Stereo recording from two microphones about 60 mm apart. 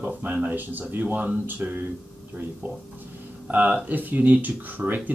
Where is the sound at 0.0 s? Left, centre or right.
Centre.